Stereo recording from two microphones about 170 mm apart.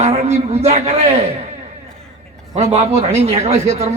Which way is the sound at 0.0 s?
40° right (ahead or behind).